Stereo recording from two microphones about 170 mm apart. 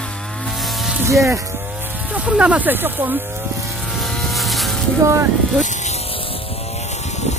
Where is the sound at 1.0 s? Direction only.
15° right (ahead or behind).